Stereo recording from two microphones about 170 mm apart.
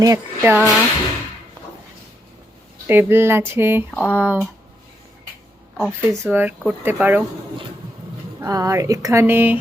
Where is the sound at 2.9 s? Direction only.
15° right (ahead or behind).